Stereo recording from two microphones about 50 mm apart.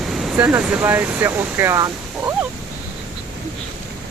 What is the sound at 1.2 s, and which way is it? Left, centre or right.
Speech, right.